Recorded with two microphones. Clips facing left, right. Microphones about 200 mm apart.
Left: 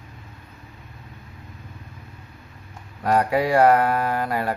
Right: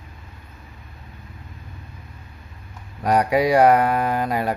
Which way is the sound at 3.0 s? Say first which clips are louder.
Right 2 dB; 15° right (ahead or behind).